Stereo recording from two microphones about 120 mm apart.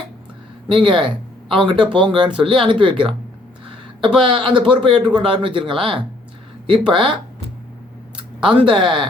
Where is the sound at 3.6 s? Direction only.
45° right (ahead or behind).